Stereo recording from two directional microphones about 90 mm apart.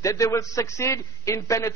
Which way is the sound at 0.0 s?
35° left (ahead or behind).